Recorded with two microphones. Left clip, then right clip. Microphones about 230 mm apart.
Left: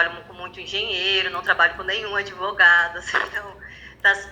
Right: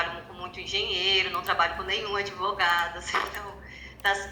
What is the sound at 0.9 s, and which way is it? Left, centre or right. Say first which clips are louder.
Speech: left 3 dB; right.